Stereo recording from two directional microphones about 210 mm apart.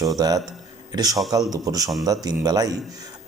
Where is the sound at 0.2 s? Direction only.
15° right (ahead or behind).